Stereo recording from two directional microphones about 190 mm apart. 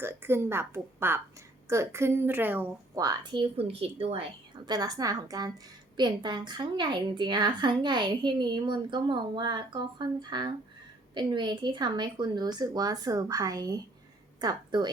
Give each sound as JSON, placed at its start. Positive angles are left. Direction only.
{"t": 0.0, "sound": "a woman's voice", "side_deg": -10}